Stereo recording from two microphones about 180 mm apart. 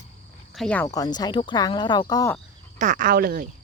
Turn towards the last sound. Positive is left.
turn(degrees=-55)  # may be behind; listen again after turning